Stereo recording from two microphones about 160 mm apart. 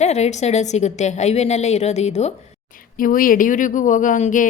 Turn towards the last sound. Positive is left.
turn(degrees=55)  # may be behind; listen again after turning